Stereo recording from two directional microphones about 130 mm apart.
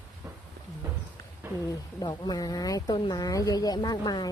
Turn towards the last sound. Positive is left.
turn(degrees=30)  # may be behind; listen again after turning